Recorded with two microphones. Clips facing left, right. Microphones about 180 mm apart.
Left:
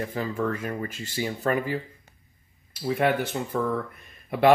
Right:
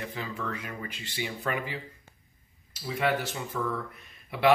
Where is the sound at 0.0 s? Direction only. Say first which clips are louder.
Left 8 dB; 45° left (ahead or behind).